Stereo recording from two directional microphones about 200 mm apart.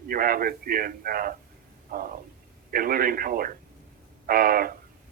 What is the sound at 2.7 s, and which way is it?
Speech, 45° right (ahead or behind).